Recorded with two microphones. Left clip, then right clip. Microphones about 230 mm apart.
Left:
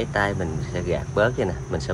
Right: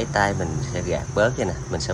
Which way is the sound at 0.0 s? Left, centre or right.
Centre.